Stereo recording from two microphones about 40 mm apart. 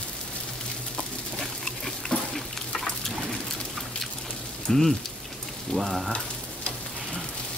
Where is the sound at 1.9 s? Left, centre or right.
Centre.